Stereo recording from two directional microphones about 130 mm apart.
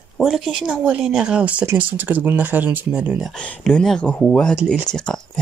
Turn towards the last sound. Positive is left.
turn(degrees=5)  # may be behind; listen again after turning